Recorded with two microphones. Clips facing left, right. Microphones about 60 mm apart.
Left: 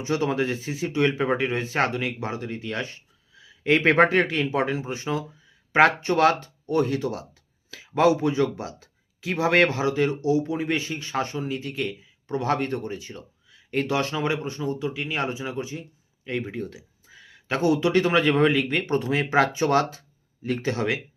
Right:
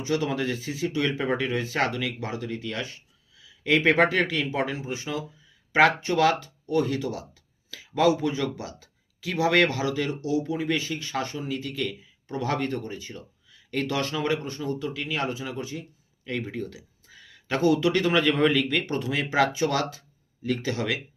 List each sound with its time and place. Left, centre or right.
0.0 s speech: left